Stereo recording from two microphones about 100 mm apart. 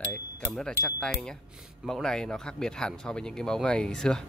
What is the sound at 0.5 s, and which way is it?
Speech, 5° left (ahead or behind).